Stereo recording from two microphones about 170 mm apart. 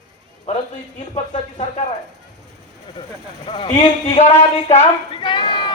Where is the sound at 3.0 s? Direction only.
25° left (ahead or behind).